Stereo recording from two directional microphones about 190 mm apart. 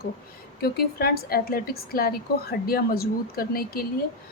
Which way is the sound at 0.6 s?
55° left (ahead or behind).